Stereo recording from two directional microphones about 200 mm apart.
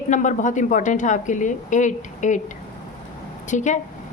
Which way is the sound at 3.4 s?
35° left (ahead or behind).